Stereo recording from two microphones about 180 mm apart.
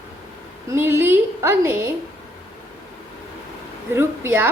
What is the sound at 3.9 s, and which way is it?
Speech, 15° right (ahead or behind).